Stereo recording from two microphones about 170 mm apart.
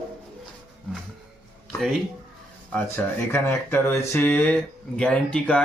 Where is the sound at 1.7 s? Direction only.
Centre (ahead or behind).